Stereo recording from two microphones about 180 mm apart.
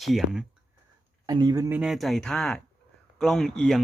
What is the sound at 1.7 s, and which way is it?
Speech, 5° right (ahead or behind).